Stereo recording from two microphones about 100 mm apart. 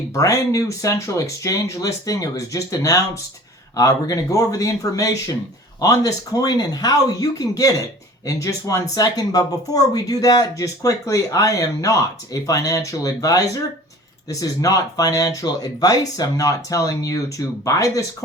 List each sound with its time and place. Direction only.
0.1 s speech: 35° left (ahead or behind)